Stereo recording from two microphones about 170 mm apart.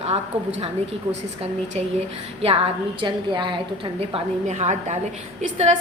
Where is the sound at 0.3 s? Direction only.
35° right (ahead or behind).